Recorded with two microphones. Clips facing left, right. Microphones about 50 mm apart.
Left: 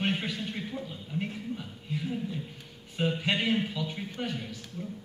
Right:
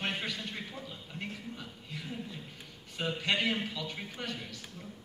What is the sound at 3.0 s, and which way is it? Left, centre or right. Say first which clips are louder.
A man's voice: left 3 dB; centre.